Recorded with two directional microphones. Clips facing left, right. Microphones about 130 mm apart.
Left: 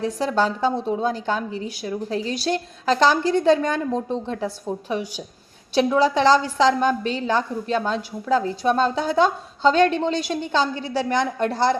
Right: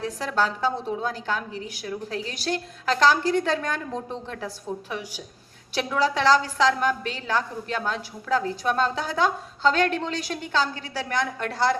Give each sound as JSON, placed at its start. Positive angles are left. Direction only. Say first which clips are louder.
{"t": 0.0, "sound": "a woman's voice", "louder": "left 4 dB", "side_deg": 25}